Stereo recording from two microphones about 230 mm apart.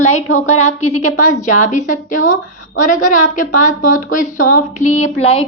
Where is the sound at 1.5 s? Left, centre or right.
Left.